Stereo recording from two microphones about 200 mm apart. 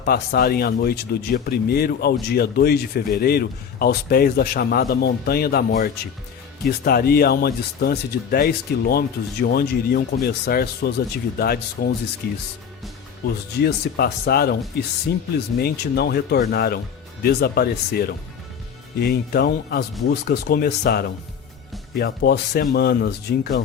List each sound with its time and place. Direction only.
0.0 s speech: 50° left (ahead or behind)
13.6 s speech: 55° left (ahead or behind)